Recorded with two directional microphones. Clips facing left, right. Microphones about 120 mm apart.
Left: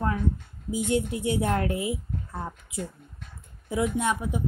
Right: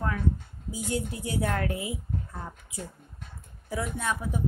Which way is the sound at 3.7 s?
20° left (ahead or behind).